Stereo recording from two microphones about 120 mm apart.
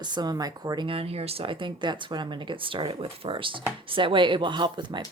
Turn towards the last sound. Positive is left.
turn(degrees=-40)  # may be behind; listen again after turning